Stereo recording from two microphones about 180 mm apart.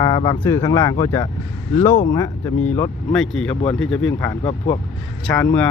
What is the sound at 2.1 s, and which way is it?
Speech, 20° left (ahead or behind).